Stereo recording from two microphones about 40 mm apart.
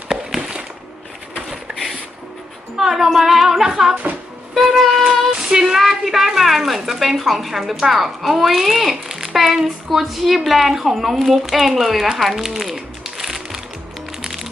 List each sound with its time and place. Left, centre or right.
1.5 s a sound: centre
2.7 s speech: centre
4.5 s music: centre
5.4 s speech: centre
12.1 s crumpling: centre